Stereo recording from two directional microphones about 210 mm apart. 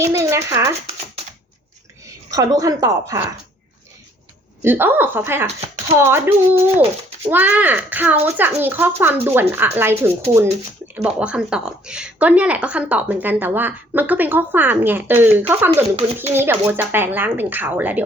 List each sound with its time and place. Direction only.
0.0 s speech: 15° right (ahead or behind)
2.0 s a woman's voice: 15° right (ahead or behind)
4.6 s speech: 10° right (ahead or behind)
5.5 s a sound: 30° right (ahead or behind)
6.0 s speech: 10° right (ahead or behind)